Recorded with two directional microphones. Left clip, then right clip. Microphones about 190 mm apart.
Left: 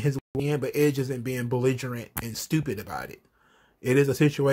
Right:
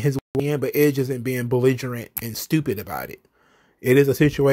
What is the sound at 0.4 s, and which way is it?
Speech, 35° right (ahead or behind).